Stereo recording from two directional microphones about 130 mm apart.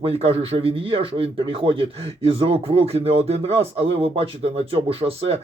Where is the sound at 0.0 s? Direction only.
50° right (ahead or behind).